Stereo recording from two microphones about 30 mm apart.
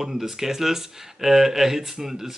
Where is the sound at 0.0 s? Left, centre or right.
Centre.